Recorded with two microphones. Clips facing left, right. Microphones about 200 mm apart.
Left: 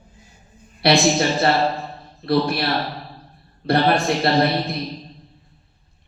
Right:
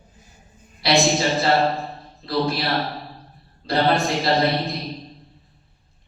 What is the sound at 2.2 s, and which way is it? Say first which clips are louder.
Speech: left 3 dB; 60° left (ahead or behind).